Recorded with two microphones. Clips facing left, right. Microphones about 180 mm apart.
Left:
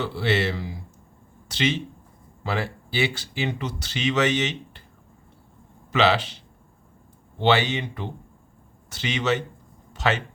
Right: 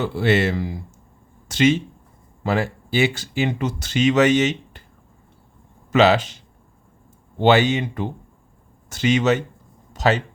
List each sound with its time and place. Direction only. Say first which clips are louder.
0.0 s speech: right 5 dB; 50° right (ahead or behind)
5.9 s speech: right 5 dB; 45° right (ahead or behind)